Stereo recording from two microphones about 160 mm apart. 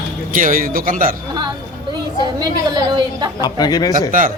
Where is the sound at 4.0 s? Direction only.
55° right (ahead or behind).